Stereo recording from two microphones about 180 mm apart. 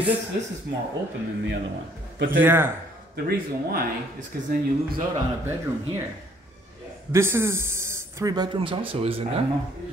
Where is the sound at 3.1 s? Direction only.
55° right (ahead or behind).